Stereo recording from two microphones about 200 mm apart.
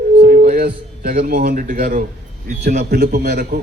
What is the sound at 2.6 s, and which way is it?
Speech, 35° right (ahead or behind).